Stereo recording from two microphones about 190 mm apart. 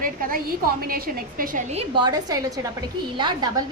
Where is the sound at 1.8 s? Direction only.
25° right (ahead or behind).